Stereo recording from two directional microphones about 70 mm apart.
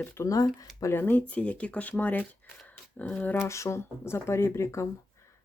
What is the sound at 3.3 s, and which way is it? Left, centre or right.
Speech, left.